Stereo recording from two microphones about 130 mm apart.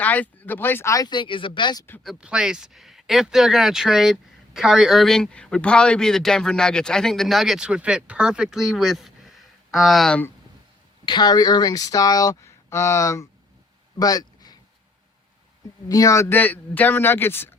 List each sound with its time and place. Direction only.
0.0 s speech: 15° left (ahead or behind); by 1.8 s 35° left (ahead or behind)
2.0 s speech: 5° right (ahead or behind)
11.0 s speech: 35° left (ahead or behind)
14.0 s a sound: 30° left (ahead or behind)
15.9 s a man's voice: 25° left (ahead or behind)